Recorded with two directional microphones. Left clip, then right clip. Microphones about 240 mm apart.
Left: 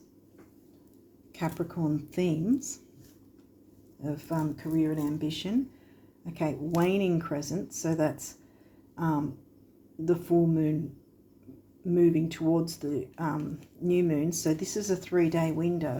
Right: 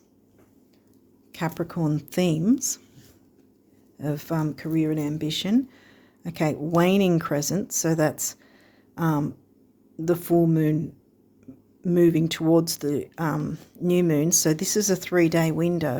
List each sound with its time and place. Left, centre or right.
1.3 s speech: right
4.0 s speech: right
9.0 s a sound: right
10.1 s speech: right
11.8 s speech: right